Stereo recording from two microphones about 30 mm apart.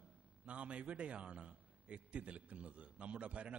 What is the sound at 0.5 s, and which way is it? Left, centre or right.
A man's voice, right.